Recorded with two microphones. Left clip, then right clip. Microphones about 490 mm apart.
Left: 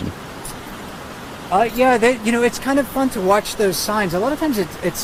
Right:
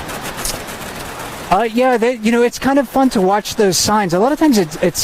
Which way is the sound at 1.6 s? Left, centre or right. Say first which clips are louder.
Left 1 dB; right.